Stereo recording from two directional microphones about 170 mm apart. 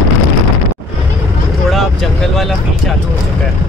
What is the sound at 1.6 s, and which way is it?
Speech, centre (ahead or behind).